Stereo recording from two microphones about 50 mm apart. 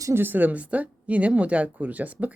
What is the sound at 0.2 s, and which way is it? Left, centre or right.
Speech, right.